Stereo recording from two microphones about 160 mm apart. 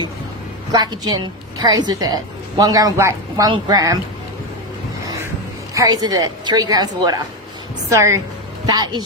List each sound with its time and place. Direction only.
0.7 s a woman's voice: 25° right (ahead or behind)
5.7 s a woman's voice: 20° right (ahead or behind)